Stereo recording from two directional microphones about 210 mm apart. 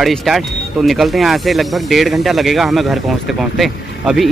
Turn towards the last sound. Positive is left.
turn(degrees=0)  # may be behind; listen again after turning